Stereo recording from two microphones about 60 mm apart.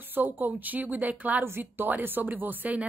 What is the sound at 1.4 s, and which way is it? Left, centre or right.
A woman's voice, right.